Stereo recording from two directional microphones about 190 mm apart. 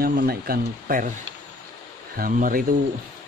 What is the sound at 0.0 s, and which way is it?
Speech, 55° right (ahead or behind).